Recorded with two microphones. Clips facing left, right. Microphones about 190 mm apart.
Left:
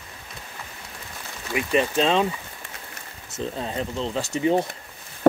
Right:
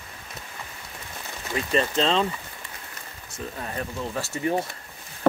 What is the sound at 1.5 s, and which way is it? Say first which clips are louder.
Speech: left 2 dB; 15° left (ahead or behind).